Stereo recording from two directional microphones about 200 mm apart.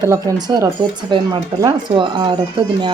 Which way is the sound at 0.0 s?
15° right (ahead or behind).